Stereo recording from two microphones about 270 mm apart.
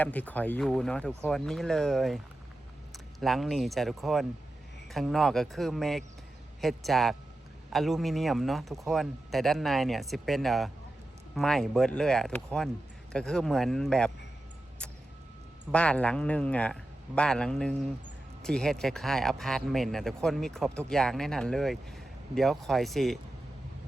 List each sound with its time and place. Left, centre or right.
0.0 s speech: centre
15.7 s speech: centre